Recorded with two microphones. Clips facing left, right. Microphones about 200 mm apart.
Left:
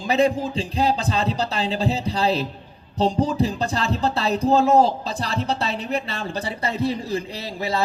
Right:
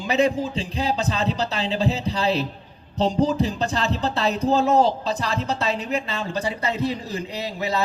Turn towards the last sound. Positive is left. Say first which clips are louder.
# even
turn(degrees=35)  # may be behind; listen again after turning